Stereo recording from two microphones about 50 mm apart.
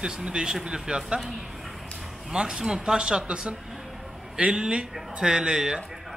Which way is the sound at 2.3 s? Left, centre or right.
Centre.